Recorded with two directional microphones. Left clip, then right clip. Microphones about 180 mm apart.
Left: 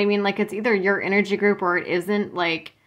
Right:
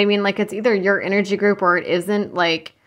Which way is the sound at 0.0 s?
25° right (ahead or behind).